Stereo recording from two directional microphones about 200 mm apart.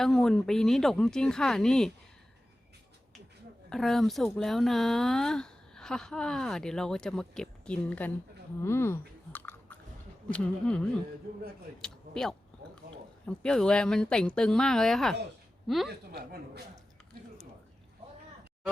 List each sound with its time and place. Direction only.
0.0 s speech: 5° left (ahead or behind)
3.7 s speech: centre (ahead or behind)
8.6 s chewing: 10° left (ahead or behind)
10.2 s speech: 5° left (ahead or behind)
11.8 s a sound: 5° left (ahead or behind)
13.2 s speech: 5° left (ahead or behind)
15.9 s speech: 50° right (ahead or behind)